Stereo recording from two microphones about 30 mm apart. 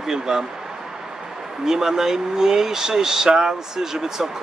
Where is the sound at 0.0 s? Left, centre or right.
Centre.